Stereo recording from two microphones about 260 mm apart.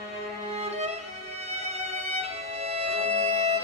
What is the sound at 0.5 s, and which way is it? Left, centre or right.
Violin, right.